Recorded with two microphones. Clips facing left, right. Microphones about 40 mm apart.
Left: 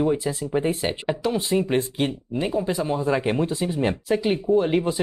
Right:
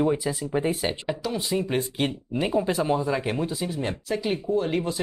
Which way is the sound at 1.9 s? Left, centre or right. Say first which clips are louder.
Left 2 dB; centre.